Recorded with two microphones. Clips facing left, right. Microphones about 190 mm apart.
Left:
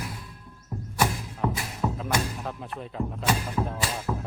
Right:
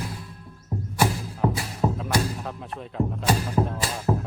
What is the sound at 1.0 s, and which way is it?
Music, 30° right (ahead or behind).